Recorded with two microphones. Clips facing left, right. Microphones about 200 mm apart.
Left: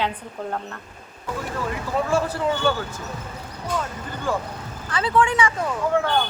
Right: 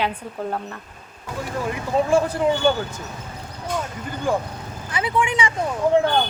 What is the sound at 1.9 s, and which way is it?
Speech, 15° right (ahead or behind).